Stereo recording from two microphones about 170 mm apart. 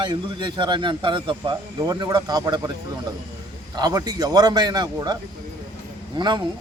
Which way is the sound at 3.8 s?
25° right (ahead or behind).